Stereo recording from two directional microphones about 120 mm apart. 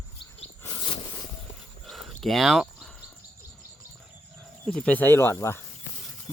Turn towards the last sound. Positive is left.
turn(degrees=20)  # may be behind; listen again after turning